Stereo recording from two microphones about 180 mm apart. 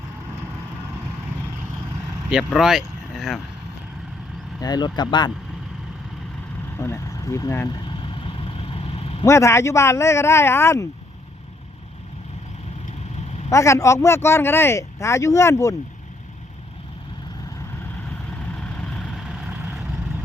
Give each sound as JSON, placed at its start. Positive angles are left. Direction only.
{"t": 2.3, "sound": "speech", "side_deg": -5}
{"t": 4.6, "sound": "speech", "side_deg": 25}
{"t": 6.7, "sound": "speech", "side_deg": 15}
{"t": 7.9, "sound": "vehicle", "side_deg": 30}
{"t": 9.2, "sound": "speech", "side_deg": 15}
{"t": 13.5, "sound": "speech", "side_deg": 15}
{"t": 18.7, "sound": "vehicle", "side_deg": 5}